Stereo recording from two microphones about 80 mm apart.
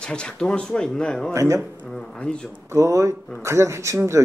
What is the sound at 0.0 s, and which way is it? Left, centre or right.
Speech, centre.